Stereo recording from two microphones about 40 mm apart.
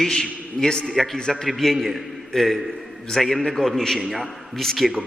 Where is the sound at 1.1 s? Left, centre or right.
Centre.